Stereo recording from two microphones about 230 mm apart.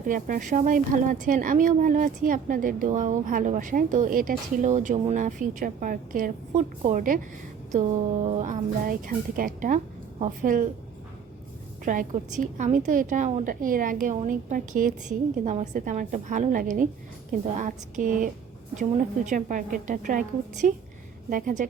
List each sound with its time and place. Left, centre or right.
0.1 s speech: right
11.9 s speech: right